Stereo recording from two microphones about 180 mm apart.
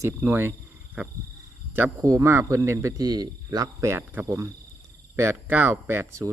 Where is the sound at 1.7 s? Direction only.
15° right (ahead or behind).